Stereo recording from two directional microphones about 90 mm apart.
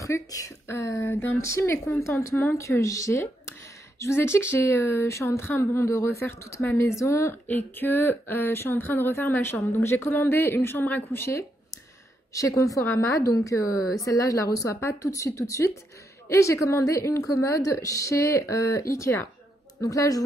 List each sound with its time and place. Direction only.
0.0 s speech: 40° left (ahead or behind)
1.0 s speech: 20° left (ahead or behind)
7.4 s speech: 20° left (ahead or behind)
11.2 s a sound: 35° left (ahead or behind)
12.3 s speech: 35° left (ahead or behind)